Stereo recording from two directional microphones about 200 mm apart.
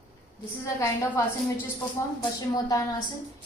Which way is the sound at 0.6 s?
15° left (ahead or behind).